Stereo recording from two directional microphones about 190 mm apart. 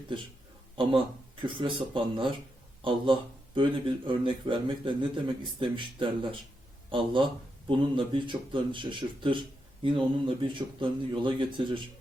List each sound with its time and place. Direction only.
1.5 s a man's voice: 25° right (ahead or behind)